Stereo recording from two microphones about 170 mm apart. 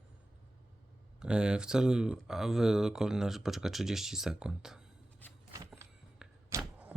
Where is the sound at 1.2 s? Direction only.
5° right (ahead or behind).